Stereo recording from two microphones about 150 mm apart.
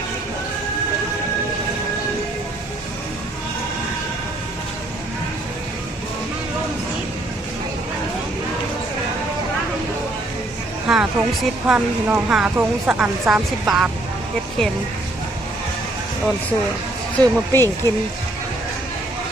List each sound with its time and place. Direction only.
10.8 s speech: 5° right (ahead or behind)
17.2 s speech: 15° left (ahead or behind)